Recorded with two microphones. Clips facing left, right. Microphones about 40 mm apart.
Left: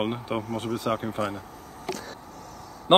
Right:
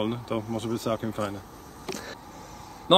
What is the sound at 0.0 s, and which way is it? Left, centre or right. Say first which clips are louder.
Speech: left 1 dB; centre.